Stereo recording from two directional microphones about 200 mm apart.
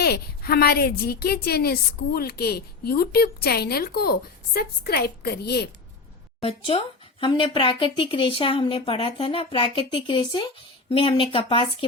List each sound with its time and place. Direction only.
0.0 s a woman's voice: 50° left (ahead or behind)
6.4 s speech: 25° left (ahead or behind)